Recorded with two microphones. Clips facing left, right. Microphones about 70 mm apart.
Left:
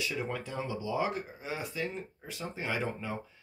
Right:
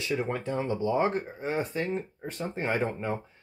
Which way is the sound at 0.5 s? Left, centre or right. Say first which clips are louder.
Right 7 dB; right.